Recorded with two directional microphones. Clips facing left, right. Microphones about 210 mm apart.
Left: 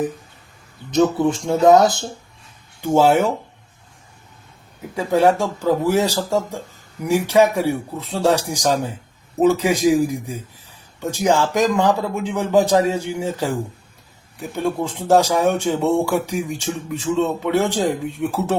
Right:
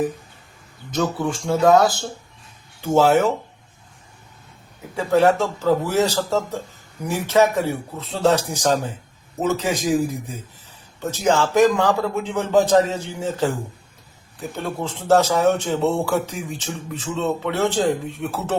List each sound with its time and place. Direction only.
1.2 s speech: 20° left (ahead or behind)
4.9 s speech: 15° left (ahead or behind)
11.0 s speech: 15° left (ahead or behind)